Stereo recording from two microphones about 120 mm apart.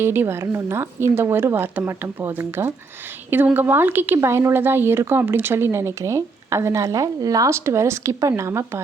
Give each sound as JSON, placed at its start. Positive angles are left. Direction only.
{"t": 0.0, "sound": "a woman's voice", "side_deg": -20}